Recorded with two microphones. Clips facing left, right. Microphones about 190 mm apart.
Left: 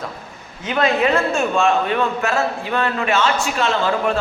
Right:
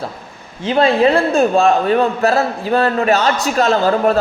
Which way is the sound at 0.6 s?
30° right (ahead or behind).